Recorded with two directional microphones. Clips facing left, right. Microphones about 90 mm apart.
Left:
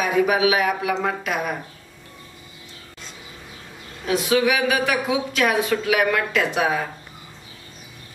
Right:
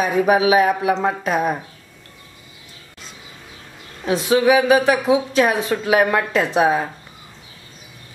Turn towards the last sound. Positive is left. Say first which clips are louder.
# right 4 dB
turn(degrees=-30)  # may be behind; listen again after turning